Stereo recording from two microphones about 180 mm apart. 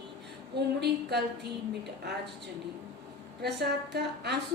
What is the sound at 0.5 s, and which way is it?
Speech, 65° right (ahead or behind).